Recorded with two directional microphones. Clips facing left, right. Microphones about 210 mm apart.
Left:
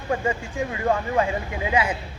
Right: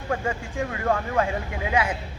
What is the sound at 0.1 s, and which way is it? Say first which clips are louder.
Speech: left 3 dB; 10° left (ahead or behind).